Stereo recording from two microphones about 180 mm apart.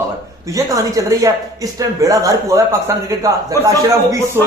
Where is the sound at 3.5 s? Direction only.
15° left (ahead or behind).